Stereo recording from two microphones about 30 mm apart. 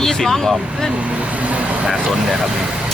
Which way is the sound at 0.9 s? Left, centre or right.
Right.